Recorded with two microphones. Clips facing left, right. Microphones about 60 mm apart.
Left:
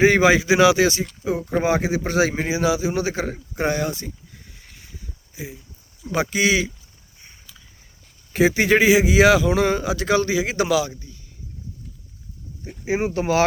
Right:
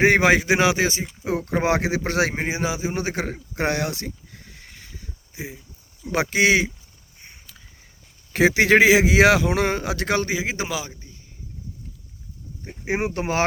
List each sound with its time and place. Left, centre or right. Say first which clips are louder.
0.0 s a man's voice: left 1 dB; right
1.6 s speech: left 1 dB; right
2.3 s a man's voice: left 4 dB; right
3.5 s a sound: left 1 dB; right
6.1 s a man's voice: right 1 dB; right
8.3 s a man's voice: right 1 dB; right
10.4 s speech: left 7 dB; centre
12.6 s a man's voice: left 2 dB; right